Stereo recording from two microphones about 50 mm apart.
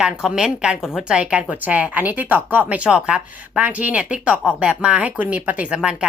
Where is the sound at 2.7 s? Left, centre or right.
Right.